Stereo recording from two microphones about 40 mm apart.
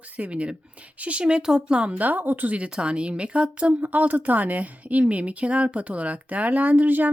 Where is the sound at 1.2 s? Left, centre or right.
Centre.